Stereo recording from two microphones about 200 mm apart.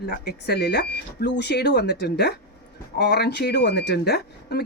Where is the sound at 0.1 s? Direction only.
55° left (ahead or behind).